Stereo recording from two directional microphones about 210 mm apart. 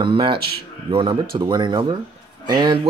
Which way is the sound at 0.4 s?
50° right (ahead or behind).